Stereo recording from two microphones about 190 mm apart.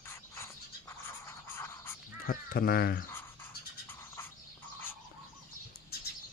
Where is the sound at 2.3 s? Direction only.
50° left (ahead or behind).